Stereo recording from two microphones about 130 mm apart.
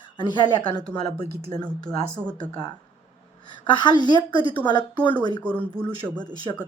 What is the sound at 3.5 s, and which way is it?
Speech, 35° left (ahead or behind).